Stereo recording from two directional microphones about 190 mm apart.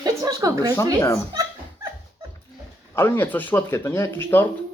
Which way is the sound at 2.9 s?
10° left (ahead or behind).